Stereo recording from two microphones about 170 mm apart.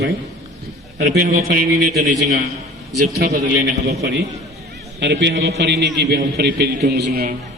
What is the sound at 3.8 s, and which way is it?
Speech, 70° right (ahead or behind).